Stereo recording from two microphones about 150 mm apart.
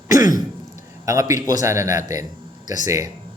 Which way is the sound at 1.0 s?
20° right (ahead or behind).